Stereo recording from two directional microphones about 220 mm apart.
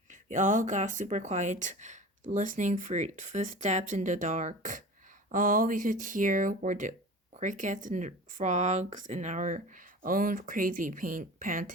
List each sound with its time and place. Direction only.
0.1 s speech: 35° right (ahead or behind)